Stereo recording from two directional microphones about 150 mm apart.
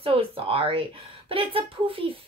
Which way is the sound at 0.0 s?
40° right (ahead or behind).